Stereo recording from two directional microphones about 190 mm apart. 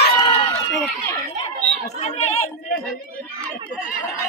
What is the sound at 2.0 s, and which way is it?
Speech, 35° left (ahead or behind).